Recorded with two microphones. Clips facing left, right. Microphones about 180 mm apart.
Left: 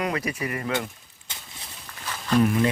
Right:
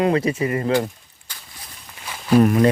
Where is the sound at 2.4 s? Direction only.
50° right (ahead or behind).